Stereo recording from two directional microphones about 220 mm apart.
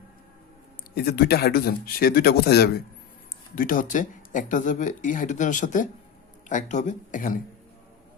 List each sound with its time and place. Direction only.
0.9 s speech: 45° left (ahead or behind)